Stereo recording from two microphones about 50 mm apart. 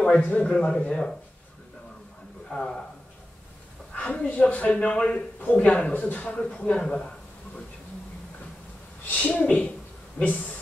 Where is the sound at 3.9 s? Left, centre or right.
Left.